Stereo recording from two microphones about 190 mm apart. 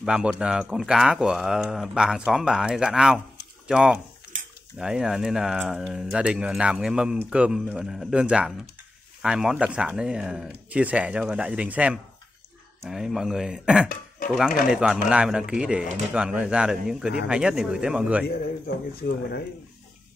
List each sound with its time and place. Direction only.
0.0 s speech: 5° right (ahead or behind)
19.0 s speech: 65° left (ahead or behind)